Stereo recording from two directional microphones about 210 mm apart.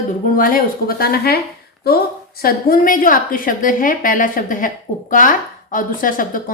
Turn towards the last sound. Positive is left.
turn(degrees=40)  # may be behind; listen again after turning